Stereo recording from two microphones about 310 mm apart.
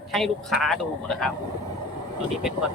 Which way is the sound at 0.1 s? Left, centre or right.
Centre.